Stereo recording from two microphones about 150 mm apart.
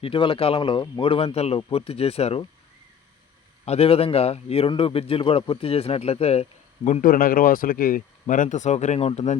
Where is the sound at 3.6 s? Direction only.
40° left (ahead or behind).